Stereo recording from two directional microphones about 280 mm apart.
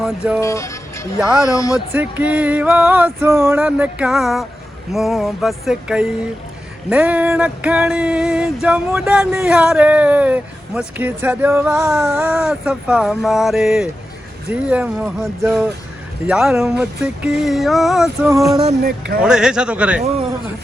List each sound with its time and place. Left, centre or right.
0.3 s speech: centre
1.2 s speech: centre
1.5 s speech: centre
1.9 s speech: centre
18.6 s speech: right
19.2 s speech: centre